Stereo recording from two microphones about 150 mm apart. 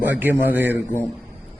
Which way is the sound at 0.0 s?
15° right (ahead or behind).